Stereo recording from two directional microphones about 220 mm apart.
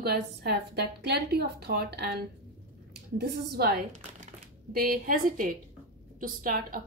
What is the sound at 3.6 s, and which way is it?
A woman's voice, 45° right (ahead or behind).